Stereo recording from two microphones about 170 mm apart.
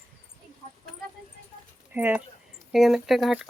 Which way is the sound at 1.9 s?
10° right (ahead or behind).